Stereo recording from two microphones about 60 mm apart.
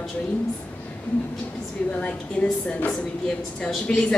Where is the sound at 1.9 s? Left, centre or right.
Left.